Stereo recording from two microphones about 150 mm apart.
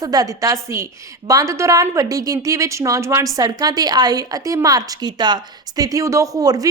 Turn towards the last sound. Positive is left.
turn(degrees=-25)  # may be behind; listen again after turning